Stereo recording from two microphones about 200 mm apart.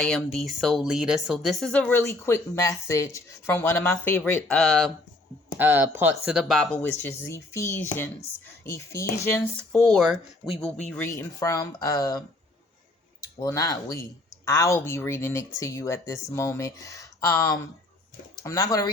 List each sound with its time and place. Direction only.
0.0 s speech: 5° left (ahead or behind)
5.5 s speech: 10° right (ahead or behind); by 12.2 s 15° left (ahead or behind)
13.2 s speech: 15° left (ahead or behind)